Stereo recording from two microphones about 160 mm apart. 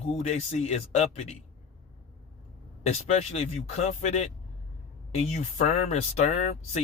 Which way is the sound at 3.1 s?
45° left (ahead or behind).